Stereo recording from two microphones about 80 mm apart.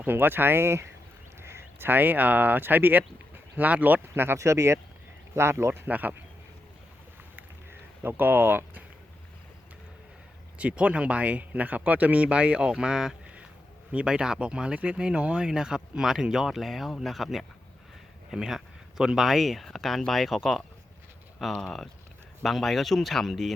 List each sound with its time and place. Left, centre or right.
0.0 s speech: right
7.7 s speech: right
10.6 s speech: centre